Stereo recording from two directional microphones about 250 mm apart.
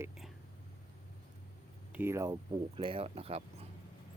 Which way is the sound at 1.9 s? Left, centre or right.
Centre.